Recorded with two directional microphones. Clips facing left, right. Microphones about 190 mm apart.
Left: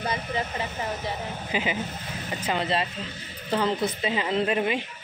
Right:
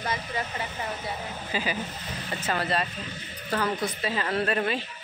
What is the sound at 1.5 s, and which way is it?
Speech, 20° left (ahead or behind).